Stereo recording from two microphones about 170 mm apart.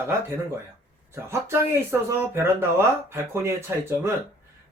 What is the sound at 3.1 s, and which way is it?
Speech, 15° right (ahead or behind).